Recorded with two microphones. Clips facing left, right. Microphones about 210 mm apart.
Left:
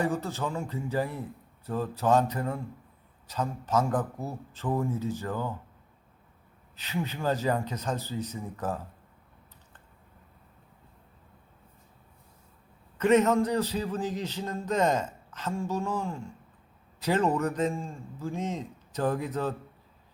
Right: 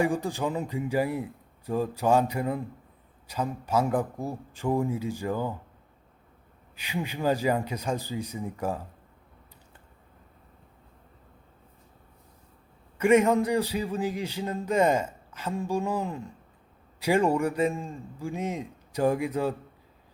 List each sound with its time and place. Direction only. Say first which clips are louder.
0.0 s a man's voice: right 3 dB; 15° right (ahead or behind)
6.7 s a man's voice: right 1 dB; 10° right (ahead or behind)
13.0 s a man's voice: right 1 dB; 10° right (ahead or behind)